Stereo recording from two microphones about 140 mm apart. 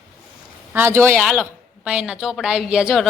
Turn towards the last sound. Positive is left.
turn(degrees=-5)  # may be behind; listen again after turning